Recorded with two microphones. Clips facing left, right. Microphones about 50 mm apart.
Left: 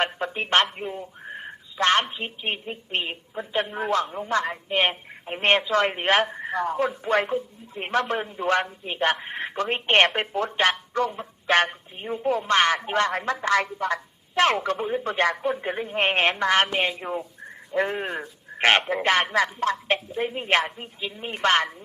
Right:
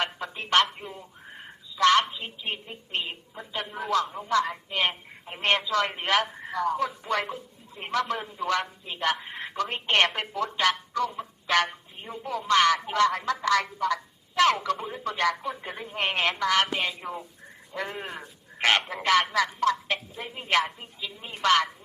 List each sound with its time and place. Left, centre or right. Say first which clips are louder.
0.0 s speech: left 5 dB; left